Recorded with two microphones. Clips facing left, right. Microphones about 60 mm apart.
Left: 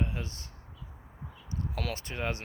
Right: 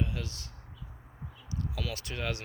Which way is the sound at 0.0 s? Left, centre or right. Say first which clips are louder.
Even; left.